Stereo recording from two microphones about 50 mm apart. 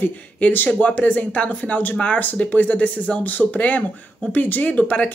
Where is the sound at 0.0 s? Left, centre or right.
Left.